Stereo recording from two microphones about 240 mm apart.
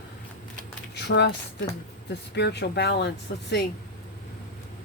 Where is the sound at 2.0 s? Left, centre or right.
Left.